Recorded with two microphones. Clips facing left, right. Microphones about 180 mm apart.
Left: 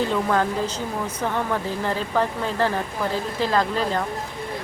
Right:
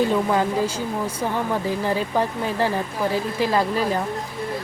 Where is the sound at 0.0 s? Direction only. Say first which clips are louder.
Right 2 dB; 15° right (ahead or behind).